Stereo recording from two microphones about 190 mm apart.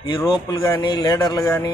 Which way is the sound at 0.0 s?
25° left (ahead or behind).